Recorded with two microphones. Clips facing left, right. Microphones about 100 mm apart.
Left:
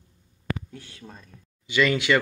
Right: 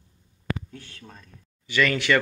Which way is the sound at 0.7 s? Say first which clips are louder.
Left 1 dB; 10° left (ahead or behind).